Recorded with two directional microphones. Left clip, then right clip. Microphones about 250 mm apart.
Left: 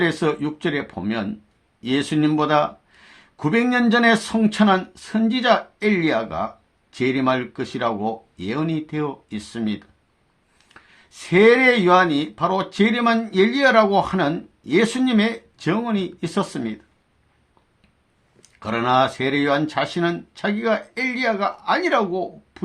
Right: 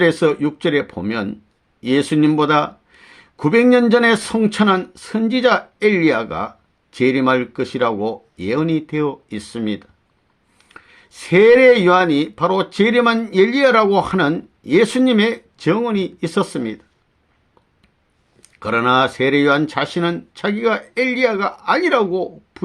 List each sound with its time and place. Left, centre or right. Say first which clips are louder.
0.0 s speech: right 6 dB; right
18.4 s speech: right 5 dB; right